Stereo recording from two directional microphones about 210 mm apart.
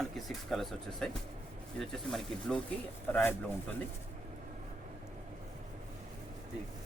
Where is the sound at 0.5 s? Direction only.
Centre (ahead or behind).